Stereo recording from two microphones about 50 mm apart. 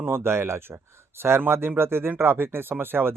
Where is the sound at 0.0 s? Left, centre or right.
Right.